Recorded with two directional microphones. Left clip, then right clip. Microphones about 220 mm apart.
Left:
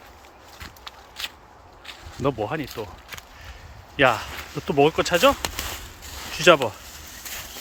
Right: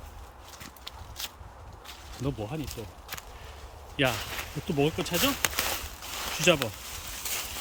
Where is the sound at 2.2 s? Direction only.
40° left (ahead or behind).